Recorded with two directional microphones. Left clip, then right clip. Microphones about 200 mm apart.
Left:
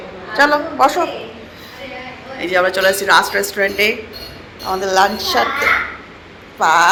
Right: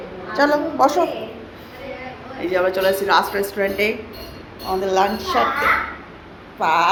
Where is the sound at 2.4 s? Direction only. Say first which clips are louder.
Left 4 dB; 5° right (ahead or behind).